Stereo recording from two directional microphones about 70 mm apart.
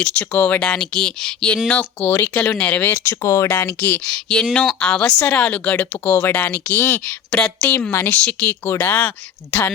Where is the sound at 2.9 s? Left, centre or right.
Left.